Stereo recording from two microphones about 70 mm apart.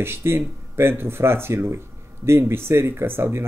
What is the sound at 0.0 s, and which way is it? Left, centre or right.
Speech, right.